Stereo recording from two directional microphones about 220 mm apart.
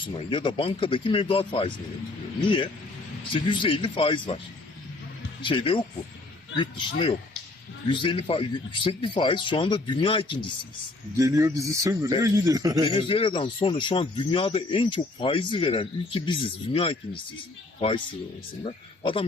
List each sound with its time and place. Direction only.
0.0 s speech: 25° left (ahead or behind)
3.3 s speech: 20° left (ahead or behind)
5.4 s speech: 20° left (ahead or behind)
11.2 s a man's voice: 15° right (ahead or behind)
12.9 s speech: 25° left (ahead or behind)